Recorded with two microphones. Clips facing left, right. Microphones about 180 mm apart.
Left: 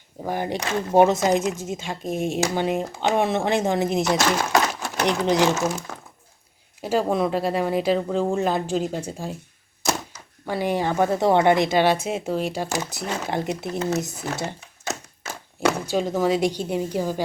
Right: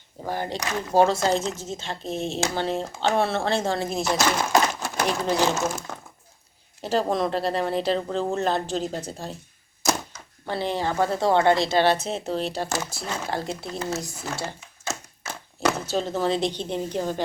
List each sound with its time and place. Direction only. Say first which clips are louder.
0.3 s a woman's voice: left 3 dB; 15° left (ahead or behind)
4.2 s speech: left 1 dB; centre (ahead or behind)
5.2 s a woman's voice: left 4 dB; 15° left (ahead or behind)
5.5 s a woman's voice: left 2 dB; centre (ahead or behind)
10.4 s a woman's voice: left 3 dB; 10° left (ahead or behind)